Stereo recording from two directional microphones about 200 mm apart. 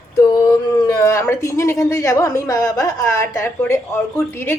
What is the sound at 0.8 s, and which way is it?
A woman's voice, 15° left (ahead or behind).